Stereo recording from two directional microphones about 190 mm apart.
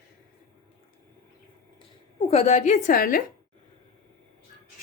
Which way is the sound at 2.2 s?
30° left (ahead or behind).